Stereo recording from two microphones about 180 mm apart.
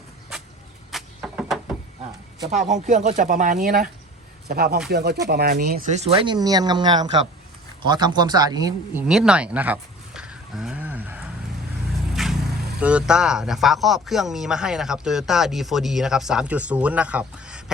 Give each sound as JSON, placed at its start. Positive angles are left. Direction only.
{"t": 0.9, "sound": "a sound", "side_deg": 0}
{"t": 2.5, "sound": "speech", "side_deg": -40}
{"t": 5.9, "sound": "speech", "side_deg": -35}
{"t": 9.0, "sound": "a sound", "side_deg": -5}
{"t": 12.1, "sound": "vehicle", "side_deg": 0}
{"t": 12.8, "sound": "speech", "side_deg": -5}